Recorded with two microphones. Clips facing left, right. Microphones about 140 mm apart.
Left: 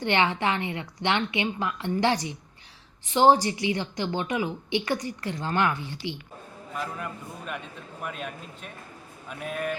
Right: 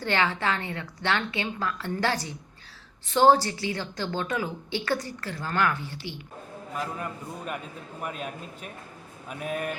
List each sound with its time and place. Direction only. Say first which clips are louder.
0.0 s a woman's voice: left 2 dB; 20° left (ahead or behind)
8.0 s a man's voice: right 1 dB; 5° right (ahead or behind)